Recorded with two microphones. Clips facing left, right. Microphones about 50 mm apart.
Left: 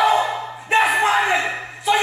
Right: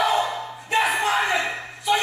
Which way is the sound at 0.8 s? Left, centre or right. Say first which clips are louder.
Left 4 dB; left.